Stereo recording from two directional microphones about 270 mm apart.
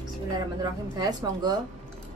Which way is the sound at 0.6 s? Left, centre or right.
Centre.